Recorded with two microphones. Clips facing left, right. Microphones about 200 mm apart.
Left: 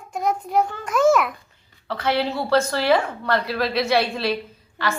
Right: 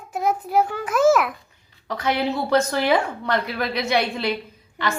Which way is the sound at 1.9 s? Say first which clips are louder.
Even; 15° right (ahead or behind).